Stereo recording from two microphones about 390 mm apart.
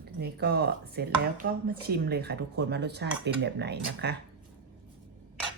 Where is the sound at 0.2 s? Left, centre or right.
Right.